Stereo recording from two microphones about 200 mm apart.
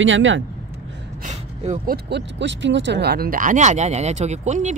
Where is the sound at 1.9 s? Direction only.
60° right (ahead or behind).